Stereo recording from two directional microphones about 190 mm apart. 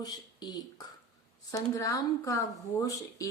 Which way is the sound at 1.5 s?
20° left (ahead or behind).